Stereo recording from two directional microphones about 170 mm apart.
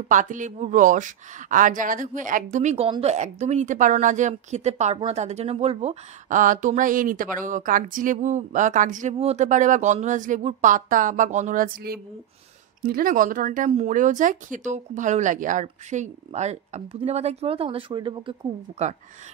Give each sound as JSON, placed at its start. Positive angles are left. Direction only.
{"t": 0.1, "sound": "a woman's voice", "side_deg": -50}